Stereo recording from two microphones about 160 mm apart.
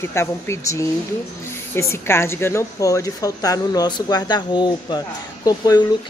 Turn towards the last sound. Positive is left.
turn(degrees=25)  # may be behind; listen again after turning